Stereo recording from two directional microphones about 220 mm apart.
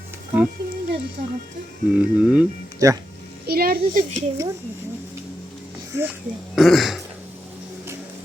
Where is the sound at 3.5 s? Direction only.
45° right (ahead or behind).